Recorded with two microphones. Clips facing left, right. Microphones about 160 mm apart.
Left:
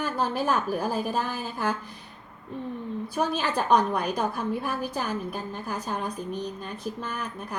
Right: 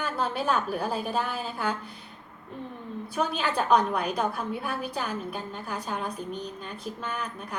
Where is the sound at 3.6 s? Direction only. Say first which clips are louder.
Even; 35° left (ahead or behind).